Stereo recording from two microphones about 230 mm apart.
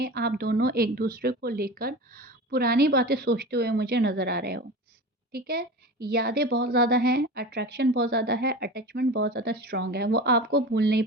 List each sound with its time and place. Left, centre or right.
0.0 s a woman's voice: right